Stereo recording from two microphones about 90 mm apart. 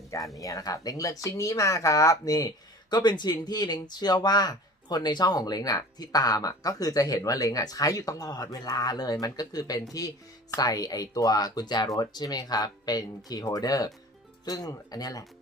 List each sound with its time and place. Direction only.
0.3 s speech: 40° left (ahead or behind)
2.9 s speech: 55° left (ahead or behind)